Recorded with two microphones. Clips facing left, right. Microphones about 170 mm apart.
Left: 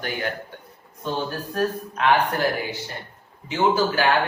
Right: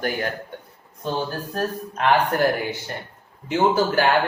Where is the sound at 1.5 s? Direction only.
40° right (ahead or behind).